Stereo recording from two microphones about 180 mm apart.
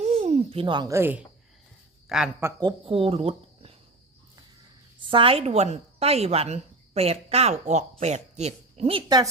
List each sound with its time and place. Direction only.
0.0 s a sound: 40° right (ahead or behind); by 1.2 s 15° right (ahead or behind)
2.0 s speech: 5° right (ahead or behind)
2.4 s speech: 25° right (ahead or behind)
5.1 s a woman's voice: 30° right (ahead or behind)